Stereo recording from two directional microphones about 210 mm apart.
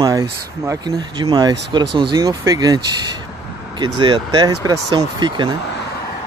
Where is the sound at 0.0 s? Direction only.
15° right (ahead or behind).